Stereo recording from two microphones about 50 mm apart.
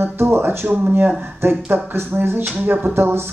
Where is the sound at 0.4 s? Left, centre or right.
Right.